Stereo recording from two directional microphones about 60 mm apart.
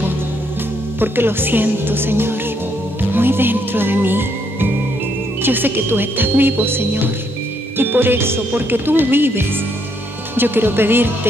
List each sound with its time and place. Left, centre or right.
0.9 s speech: right
3.1 s music: right
5.4 s speech: right